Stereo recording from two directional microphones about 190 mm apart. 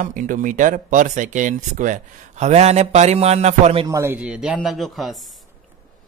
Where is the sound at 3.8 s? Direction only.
15° right (ahead or behind).